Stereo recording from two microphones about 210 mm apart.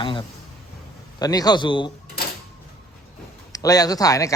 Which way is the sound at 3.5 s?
15° left (ahead or behind).